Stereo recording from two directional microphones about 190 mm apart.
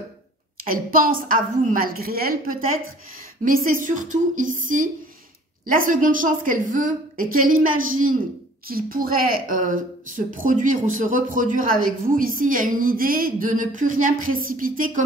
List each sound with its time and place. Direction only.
0.7 s speech: 50° right (ahead or behind)
8.6 s speech: 50° right (ahead or behind)